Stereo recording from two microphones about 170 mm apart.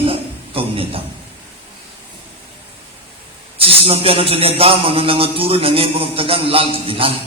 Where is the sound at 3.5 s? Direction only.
35° right (ahead or behind).